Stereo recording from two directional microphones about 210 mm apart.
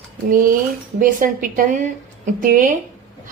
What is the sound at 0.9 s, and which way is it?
A woman's voice, 40° right (ahead or behind).